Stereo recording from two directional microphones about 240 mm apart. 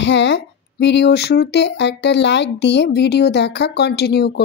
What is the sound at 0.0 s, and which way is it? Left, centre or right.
Speech, left.